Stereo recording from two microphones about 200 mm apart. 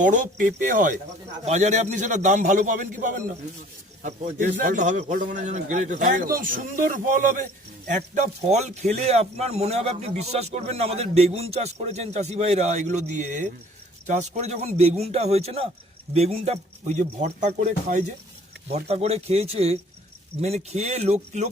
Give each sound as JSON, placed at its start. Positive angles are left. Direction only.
{"t": 0.0, "sound": "speech", "side_deg": -40}